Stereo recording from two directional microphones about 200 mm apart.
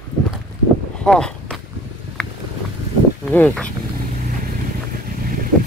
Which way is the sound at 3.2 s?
5° left (ahead or behind).